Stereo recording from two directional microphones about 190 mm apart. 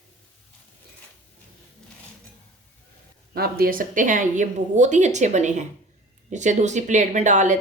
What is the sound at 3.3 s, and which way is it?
Speech, 55° right (ahead or behind).